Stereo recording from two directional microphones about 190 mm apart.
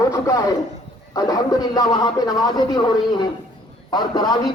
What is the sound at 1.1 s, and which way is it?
A man's voice, 20° left (ahead or behind).